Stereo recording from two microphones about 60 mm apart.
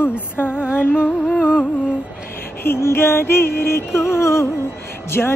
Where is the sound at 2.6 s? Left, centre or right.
Left.